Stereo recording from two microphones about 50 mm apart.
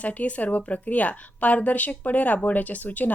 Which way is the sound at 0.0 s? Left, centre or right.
Left.